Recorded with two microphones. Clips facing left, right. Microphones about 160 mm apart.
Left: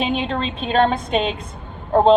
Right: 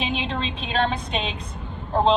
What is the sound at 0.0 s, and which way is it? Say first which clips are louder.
Speech: left 5 dB; 45° left (ahead or behind).